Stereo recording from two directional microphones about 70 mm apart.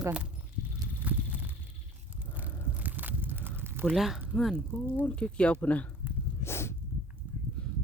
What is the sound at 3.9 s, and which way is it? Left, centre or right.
Speech, centre.